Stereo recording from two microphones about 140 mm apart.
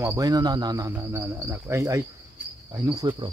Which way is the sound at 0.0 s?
25° right (ahead or behind).